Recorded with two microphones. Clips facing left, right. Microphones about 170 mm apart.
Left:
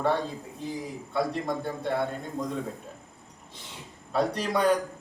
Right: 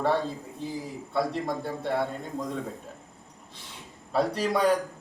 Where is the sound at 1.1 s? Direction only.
Centre (ahead or behind).